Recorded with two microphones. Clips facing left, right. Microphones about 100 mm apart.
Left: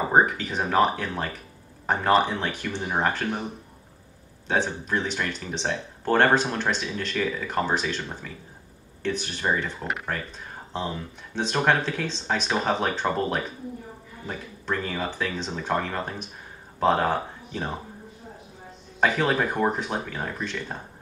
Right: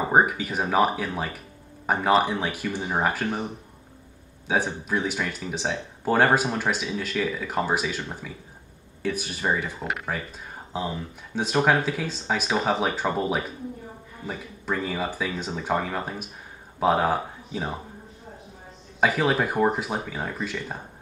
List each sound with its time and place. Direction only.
0.1 s speech: 10° right (ahead or behind)
4.5 s speech: 5° right (ahead or behind)
18.9 s speech: 5° right (ahead or behind)